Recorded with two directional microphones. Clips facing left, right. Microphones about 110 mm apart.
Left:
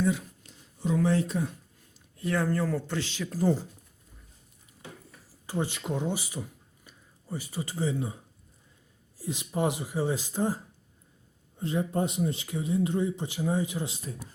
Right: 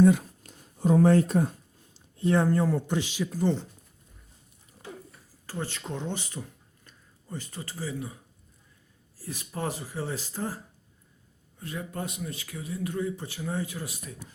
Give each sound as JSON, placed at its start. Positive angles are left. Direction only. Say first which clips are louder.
{"t": 0.0, "sound": "speech", "louder": "right 8 dB", "side_deg": -50}
{"t": 1.9, "sound": "speech", "louder": "right 5 dB", "side_deg": -25}
{"t": 3.3, "sound": "speech", "louder": "left 2 dB", "side_deg": 5}
{"t": 5.5, "sound": "speech", "louder": "left 4 dB", "side_deg": 15}
{"t": 11.6, "sound": "speech", "louder": "left 7 dB", "side_deg": 25}